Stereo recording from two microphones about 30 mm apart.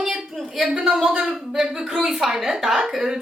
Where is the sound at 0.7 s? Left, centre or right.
Right.